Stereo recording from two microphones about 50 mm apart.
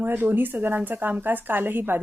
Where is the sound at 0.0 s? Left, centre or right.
Right.